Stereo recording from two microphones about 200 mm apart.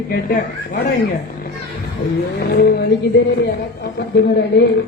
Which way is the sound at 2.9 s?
55° left (ahead or behind).